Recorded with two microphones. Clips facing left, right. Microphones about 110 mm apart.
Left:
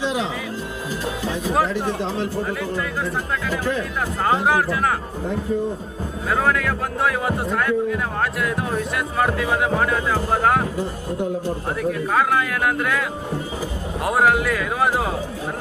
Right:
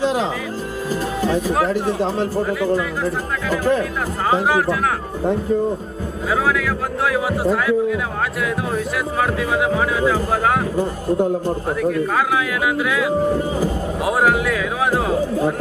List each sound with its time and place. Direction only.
0.0 s speech: 40° right (ahead or behind)
2.4 s speech: centre (ahead or behind)
3.6 s a man's voice: 45° right (ahead or behind)
4.3 s speech: centre (ahead or behind)
6.3 s speech: centre (ahead or behind)
10.8 s a man's voice: 45° right (ahead or behind)
11.8 s speech: centre (ahead or behind)
14.0 s speech: centre (ahead or behind)